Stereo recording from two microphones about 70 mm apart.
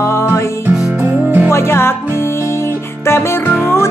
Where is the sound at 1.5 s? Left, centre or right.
Left.